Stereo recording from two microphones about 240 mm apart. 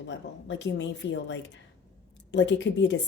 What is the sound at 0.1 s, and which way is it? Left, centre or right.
Speech, left.